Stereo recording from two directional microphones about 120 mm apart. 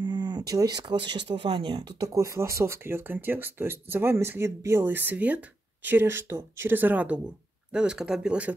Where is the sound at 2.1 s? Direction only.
25° right (ahead or behind).